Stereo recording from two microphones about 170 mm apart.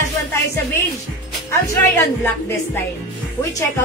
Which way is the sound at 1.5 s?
15° left (ahead or behind).